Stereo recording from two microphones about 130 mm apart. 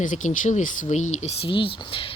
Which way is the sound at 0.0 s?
75° left (ahead or behind).